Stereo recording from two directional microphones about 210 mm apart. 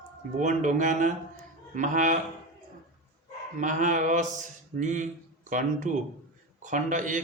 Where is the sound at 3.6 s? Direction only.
35° right (ahead or behind).